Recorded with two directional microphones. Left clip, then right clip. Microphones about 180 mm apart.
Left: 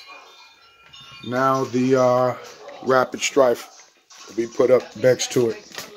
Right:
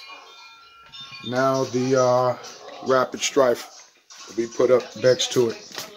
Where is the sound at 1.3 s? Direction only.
20° left (ahead or behind).